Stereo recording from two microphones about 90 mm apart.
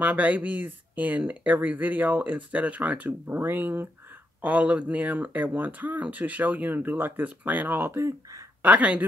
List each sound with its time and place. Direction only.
0.0 s speech: 15° right (ahead or behind); by 8.5 s 35° right (ahead or behind)
8.6 s speech: 15° right (ahead or behind)